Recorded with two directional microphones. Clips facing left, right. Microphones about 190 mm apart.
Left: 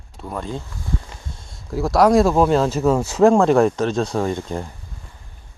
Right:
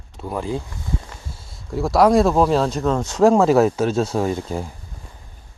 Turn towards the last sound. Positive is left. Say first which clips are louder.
# right 1 dB
turn(degrees=-5)  # may be behind; listen again after turning